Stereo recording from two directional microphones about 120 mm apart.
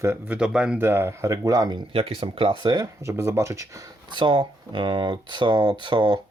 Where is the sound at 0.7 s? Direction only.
20° right (ahead or behind); by 1.8 s 35° right (ahead or behind).